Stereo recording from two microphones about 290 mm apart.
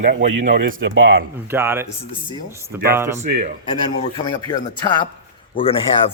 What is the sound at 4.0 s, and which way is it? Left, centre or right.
A man's voice, centre.